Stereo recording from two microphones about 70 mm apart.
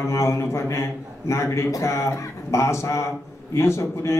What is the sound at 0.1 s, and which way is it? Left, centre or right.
A man's voice, left.